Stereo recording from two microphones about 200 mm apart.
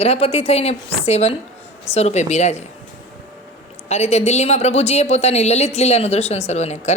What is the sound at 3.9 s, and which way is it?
A woman's voice, 35° left (ahead or behind).